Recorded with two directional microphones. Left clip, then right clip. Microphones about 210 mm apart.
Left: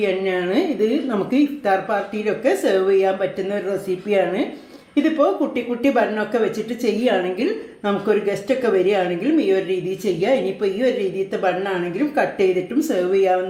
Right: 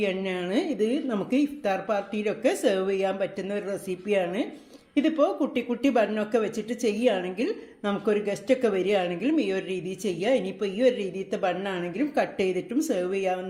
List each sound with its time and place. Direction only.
0.0 s a woman's voice: 35° right (ahead or behind)
12.9 s a woman's voice: 35° right (ahead or behind)